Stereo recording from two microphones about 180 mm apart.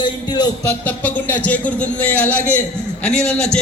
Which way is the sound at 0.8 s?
10° left (ahead or behind).